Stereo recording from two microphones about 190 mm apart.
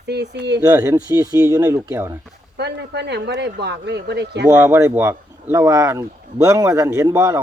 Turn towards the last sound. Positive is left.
turn(degrees=-15)  # may be behind; listen again after turning